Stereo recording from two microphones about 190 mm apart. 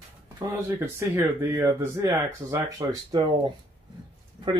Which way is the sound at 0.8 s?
15° right (ahead or behind).